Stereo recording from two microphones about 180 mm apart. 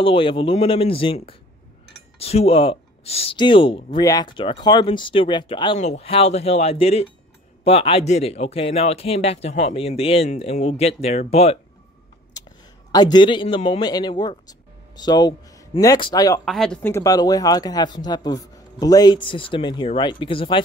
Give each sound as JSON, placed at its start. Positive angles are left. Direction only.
{"t": 0.0, "sound": "a man's voice", "side_deg": 30}
{"t": 5.8, "sound": "a man's voice", "side_deg": 35}
{"t": 12.4, "sound": "a sound", "side_deg": 20}
{"t": 12.9, "sound": "speech", "side_deg": 25}
{"t": 16.4, "sound": "speech", "side_deg": 0}